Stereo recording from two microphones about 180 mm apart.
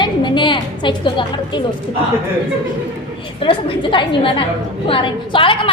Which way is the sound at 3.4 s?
30° left (ahead or behind).